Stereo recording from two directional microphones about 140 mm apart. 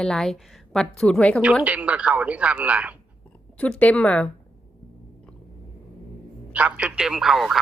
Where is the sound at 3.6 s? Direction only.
10° left (ahead or behind).